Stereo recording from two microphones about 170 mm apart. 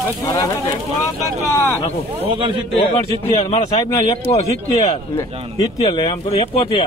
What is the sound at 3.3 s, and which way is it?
Speech, 35° left (ahead or behind).